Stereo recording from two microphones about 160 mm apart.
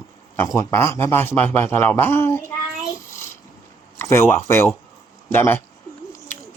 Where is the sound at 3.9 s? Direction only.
15° left (ahead or behind).